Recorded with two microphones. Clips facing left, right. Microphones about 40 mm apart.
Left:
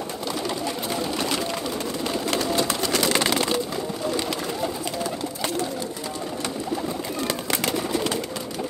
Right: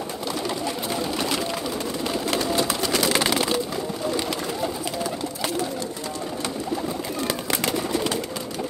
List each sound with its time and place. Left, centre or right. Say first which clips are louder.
0.7 s pigeon: even; centre
2.0 s bird: even; centre
7.2 s bird: even; centre